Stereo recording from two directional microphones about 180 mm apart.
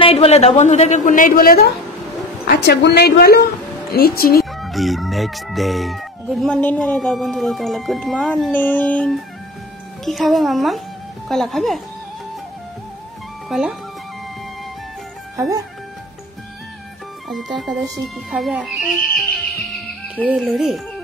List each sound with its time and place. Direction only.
0.0 s a woman's voice: 35° left (ahead or behind); by 1.7 s 55° left (ahead or behind)
2.4 s a woman's voice: 65° left (ahead or behind)
4.5 s speech: centre (ahead or behind)
13.5 s speech: 5° right (ahead or behind)
18.0 s speech: centre (ahead or behind)